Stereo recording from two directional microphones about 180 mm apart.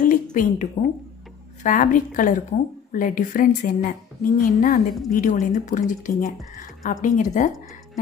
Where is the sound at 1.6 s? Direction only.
45° left (ahead or behind).